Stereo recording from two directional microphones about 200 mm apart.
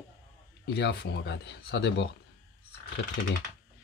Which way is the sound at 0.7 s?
55° left (ahead or behind).